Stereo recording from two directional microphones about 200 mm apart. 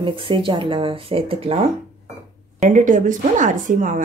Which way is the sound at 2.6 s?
40° right (ahead or behind).